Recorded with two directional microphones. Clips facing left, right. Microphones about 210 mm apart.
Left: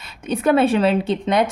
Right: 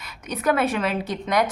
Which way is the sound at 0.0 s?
30° left (ahead or behind).